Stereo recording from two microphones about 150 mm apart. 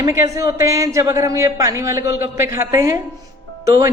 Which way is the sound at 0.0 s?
20° right (ahead or behind).